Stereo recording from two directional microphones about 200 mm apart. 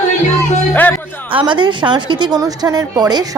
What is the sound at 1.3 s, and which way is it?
A woman's voice, 25° right (ahead or behind).